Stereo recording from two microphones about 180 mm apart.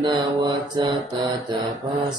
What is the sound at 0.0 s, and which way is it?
Mantra, 25° right (ahead or behind).